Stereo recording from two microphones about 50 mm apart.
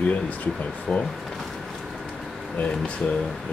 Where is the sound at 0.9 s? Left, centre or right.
Centre.